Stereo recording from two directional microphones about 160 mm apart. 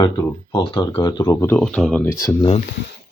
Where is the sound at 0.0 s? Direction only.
25° left (ahead or behind); by 2.0 s 5° left (ahead or behind).